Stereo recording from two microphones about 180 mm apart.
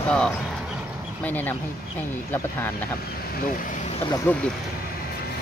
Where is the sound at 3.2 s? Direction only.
50° left (ahead or behind).